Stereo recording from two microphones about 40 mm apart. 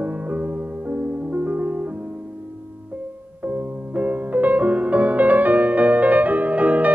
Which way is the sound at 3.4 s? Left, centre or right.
Right.